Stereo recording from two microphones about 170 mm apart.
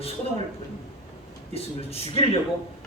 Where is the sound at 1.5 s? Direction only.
35° left (ahead or behind).